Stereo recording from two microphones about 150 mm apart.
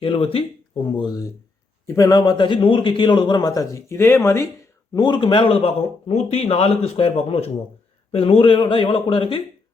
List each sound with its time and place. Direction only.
0.0 s a sound: 35° left (ahead or behind)
1.9 s speech: 20° left (ahead or behind)
4.9 s a man's voice: 30° left (ahead or behind)